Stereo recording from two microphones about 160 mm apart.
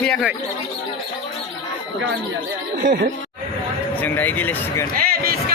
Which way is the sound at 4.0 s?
10° left (ahead or behind).